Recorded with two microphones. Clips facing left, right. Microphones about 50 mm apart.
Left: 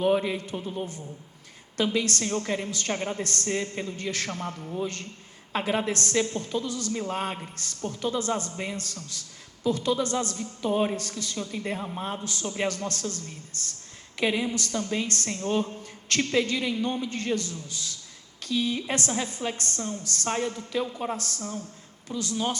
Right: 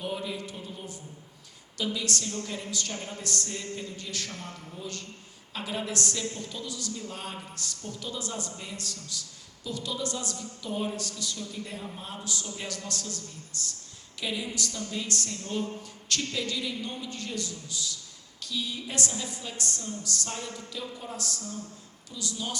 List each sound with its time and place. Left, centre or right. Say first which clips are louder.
0.0 s a woman's voice: left 10 dB; left
21.2 s a woman's voice: left 3 dB; left